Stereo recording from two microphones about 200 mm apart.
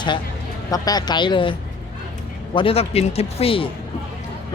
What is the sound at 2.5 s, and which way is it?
Speech, 30° left (ahead or behind).